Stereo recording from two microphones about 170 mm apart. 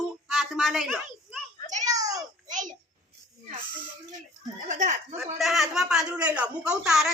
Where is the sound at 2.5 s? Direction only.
50° right (ahead or behind).